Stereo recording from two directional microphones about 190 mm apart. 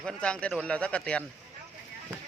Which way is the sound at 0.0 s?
5° left (ahead or behind).